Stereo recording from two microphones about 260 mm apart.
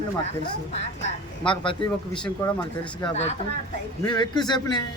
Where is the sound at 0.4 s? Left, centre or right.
Left.